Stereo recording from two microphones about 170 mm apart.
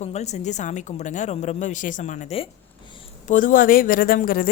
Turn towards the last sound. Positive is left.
turn(degrees=60)  # may be behind; listen again after turning